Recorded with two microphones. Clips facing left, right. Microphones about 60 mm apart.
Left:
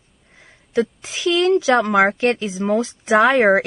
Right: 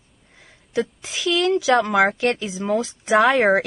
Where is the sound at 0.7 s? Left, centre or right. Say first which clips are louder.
Left 4 dB; left.